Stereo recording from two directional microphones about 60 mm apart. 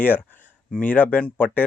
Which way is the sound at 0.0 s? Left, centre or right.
Left.